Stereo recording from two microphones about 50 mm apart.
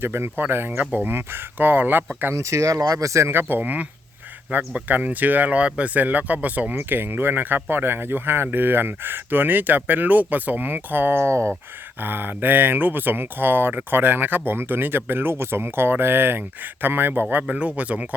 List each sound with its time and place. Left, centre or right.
0.0 s speech: right
0.8 s speech: right
2.3 s speech: right
3.6 s speech: right
12.0 s speech: right
17.5 s speech: right